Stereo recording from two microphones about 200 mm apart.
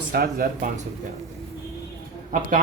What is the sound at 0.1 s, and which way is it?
Speech, 50° right (ahead or behind).